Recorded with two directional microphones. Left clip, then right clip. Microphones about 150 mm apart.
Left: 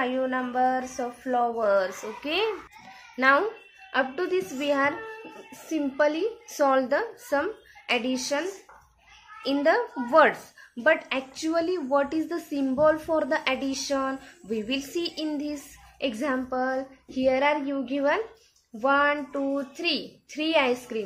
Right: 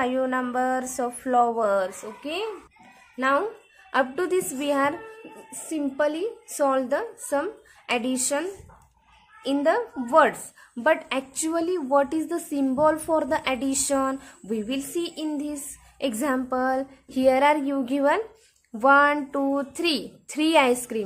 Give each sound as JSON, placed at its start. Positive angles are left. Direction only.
{"t": 0.0, "sound": "a woman's voice", "side_deg": -35}
{"t": 2.2, "sound": "speech", "side_deg": -15}
{"t": 3.9, "sound": "a woman's voice", "side_deg": -40}
{"t": 10.8, "sound": "a woman's voice", "side_deg": -30}
{"t": 14.6, "sound": "a woman's voice", "side_deg": -25}